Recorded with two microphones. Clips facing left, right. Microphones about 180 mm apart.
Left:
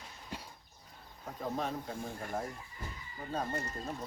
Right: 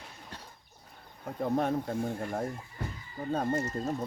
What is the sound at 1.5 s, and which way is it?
Speech, 55° right (ahead or behind).